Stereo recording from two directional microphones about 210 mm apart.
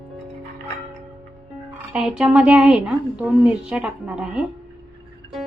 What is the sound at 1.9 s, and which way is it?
A woman's voice, 5° right (ahead or behind).